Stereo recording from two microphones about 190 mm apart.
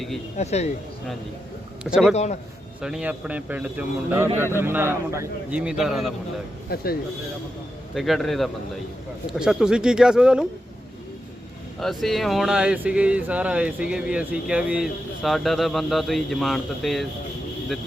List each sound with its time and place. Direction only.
0.3 s speech: 35° left (ahead or behind)
2.1 s speech: 35° left (ahead or behind)
2.8 s speech: 5° right (ahead or behind)
6.7 s speech: 55° left (ahead or behind)
7.9 s speech: centre (ahead or behind)
11.8 s speech: centre (ahead or behind)